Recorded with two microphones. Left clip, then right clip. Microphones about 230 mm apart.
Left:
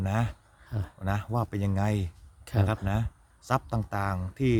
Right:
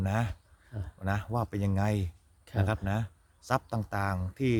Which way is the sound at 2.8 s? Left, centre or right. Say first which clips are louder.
Left 2 dB; centre.